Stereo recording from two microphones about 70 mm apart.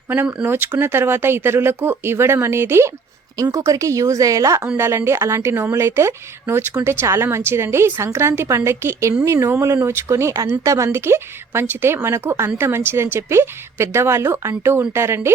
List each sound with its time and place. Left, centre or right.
0.1 s a woman's voice: right
3.5 s speech: right
4.8 s a woman's voice: right